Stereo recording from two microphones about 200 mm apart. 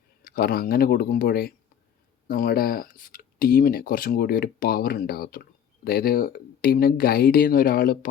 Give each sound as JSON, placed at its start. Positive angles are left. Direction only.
{"t": 0.3, "sound": "speech", "side_deg": 50}